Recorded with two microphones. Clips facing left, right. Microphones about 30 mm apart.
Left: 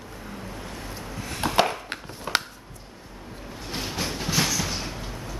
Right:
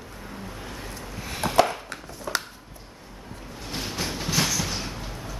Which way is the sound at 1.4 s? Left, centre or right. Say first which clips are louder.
Left 1 dB; centre.